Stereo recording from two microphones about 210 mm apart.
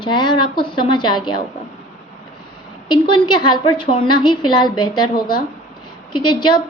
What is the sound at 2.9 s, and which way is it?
A woman's voice, 20° left (ahead or behind).